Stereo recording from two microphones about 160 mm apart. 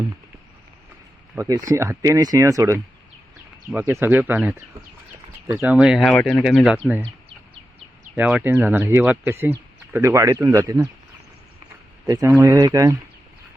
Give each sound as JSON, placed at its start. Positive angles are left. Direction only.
{"t": 1.4, "sound": "speech", "side_deg": -20}
{"t": 8.1, "sound": "speech", "side_deg": -10}
{"t": 12.0, "sound": "speech", "side_deg": -20}